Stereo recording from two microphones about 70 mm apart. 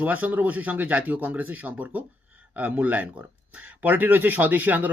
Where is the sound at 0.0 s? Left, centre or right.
Right.